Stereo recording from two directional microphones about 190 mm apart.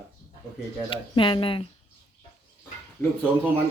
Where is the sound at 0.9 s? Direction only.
25° left (ahead or behind).